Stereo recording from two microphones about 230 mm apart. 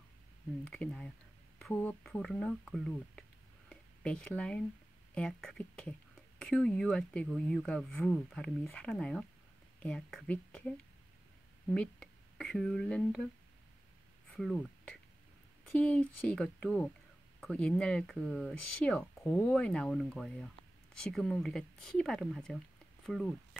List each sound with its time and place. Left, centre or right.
0.7 s speech: centre
11.7 s speech: centre
14.3 s speech: centre